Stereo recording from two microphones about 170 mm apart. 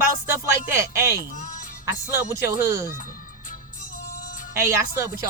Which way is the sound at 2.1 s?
15° right (ahead or behind).